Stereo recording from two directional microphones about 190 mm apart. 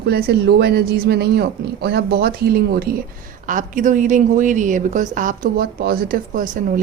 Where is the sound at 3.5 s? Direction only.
45° right (ahead or behind).